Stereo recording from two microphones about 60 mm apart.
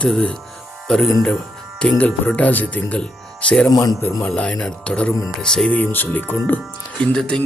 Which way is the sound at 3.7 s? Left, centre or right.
Left.